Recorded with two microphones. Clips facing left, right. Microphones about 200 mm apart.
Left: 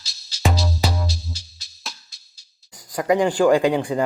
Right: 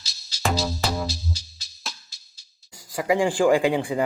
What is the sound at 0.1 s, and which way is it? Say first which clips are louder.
Music: left 2 dB; centre (ahead or behind).